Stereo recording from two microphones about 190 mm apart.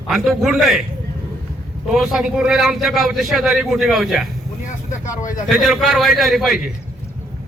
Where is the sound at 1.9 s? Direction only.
5° right (ahead or behind).